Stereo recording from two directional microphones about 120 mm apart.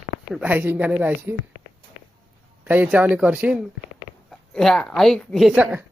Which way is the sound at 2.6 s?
15° right (ahead or behind).